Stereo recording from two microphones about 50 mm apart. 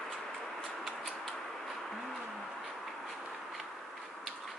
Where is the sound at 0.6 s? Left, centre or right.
Centre.